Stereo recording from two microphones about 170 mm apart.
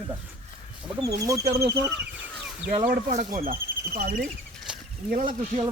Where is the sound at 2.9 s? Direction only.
50° right (ahead or behind).